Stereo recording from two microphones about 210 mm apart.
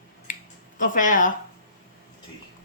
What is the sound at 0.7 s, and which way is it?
Speech, 40° left (ahead or behind).